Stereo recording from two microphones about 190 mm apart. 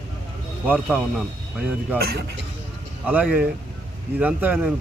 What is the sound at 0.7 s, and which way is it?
Speech, 5° right (ahead or behind).